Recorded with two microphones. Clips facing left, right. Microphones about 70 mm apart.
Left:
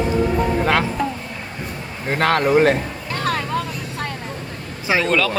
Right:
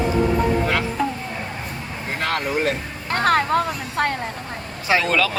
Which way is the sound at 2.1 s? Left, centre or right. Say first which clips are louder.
Left 8 dB; left.